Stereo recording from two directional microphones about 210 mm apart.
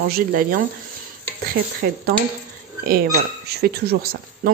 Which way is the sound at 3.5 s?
50° right (ahead or behind).